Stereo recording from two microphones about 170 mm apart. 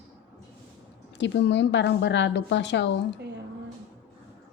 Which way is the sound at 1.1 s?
90° left.